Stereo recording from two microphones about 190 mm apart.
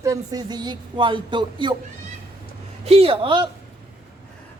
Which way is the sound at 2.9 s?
30° right (ahead or behind).